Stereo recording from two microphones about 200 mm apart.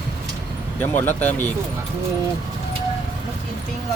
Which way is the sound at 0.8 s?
10° left (ahead or behind).